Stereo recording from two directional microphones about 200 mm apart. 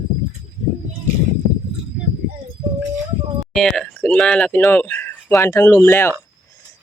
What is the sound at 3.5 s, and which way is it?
Speech, centre (ahead or behind).